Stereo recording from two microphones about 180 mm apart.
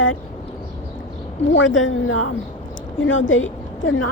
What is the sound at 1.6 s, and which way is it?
A woman's voice, 90° left.